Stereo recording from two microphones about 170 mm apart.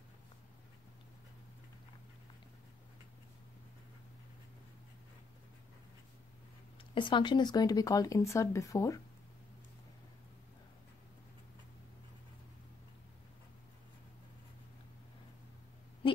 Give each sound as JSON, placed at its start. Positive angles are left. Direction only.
{"t": 6.9, "sound": "speech", "side_deg": 30}